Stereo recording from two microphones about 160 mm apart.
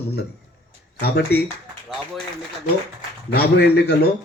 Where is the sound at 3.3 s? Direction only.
80° left.